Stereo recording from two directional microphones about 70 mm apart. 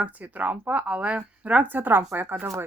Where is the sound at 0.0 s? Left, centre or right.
Right.